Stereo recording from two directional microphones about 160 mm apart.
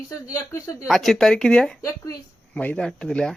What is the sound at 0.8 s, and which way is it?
Speech, centre (ahead or behind).